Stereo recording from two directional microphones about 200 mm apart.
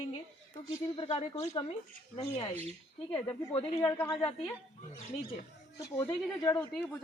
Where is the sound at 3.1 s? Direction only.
25° left (ahead or behind).